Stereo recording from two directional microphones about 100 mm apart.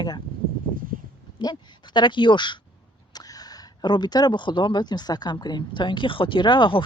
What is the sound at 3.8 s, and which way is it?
Speech, 45° left (ahead or behind).